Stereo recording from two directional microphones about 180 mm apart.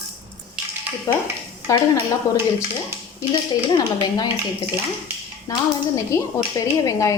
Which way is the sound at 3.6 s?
25° left (ahead or behind).